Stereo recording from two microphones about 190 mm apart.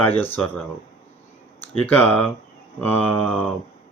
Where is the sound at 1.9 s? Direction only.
5° left (ahead or behind).